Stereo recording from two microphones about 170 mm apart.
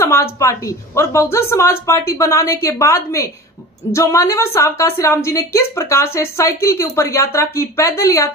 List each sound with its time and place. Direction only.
0.0 s a woman's voice: 15° left (ahead or behind)